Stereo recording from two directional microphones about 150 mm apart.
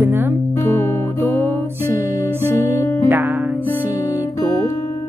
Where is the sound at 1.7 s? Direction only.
15° right (ahead or behind).